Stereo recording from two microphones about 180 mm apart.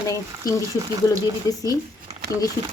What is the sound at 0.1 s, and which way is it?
A woman's voice, 20° left (ahead or behind).